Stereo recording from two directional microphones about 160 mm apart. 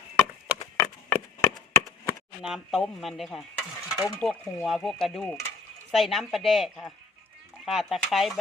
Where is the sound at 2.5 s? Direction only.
Centre (ahead or behind).